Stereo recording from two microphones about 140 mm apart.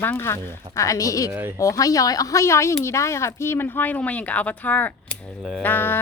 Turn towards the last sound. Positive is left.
turn(degrees=15)  # may be behind; listen again after turning